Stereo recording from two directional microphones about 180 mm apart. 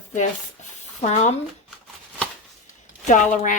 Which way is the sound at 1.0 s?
40° left (ahead or behind).